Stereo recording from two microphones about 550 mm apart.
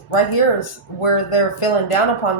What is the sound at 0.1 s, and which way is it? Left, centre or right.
Speech, left.